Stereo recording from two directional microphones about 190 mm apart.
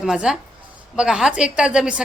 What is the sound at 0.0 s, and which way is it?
Speech, 5° right (ahead or behind).